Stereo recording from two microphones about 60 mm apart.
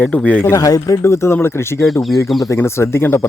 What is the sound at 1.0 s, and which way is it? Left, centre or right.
Speech, left.